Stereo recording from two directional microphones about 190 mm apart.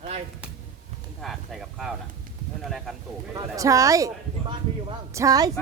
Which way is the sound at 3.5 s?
15° right (ahead or behind).